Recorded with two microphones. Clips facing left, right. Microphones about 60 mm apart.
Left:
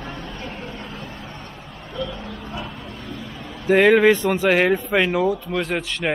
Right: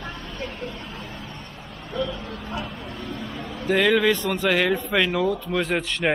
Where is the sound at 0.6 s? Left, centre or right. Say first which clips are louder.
Even; left.